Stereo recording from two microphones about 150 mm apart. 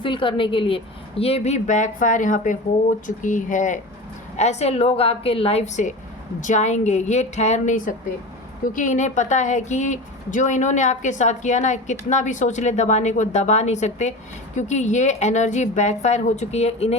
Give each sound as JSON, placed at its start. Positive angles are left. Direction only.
{"t": 0.0, "sound": "a woman's voice", "side_deg": 35}